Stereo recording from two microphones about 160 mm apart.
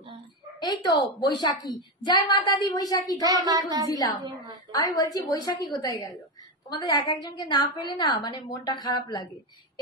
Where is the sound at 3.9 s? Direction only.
25° left (ahead or behind).